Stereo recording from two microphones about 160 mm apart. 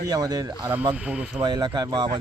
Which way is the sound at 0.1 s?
25° right (ahead or behind).